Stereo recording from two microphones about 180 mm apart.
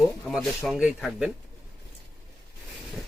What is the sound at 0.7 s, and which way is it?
Speech, 5° right (ahead or behind).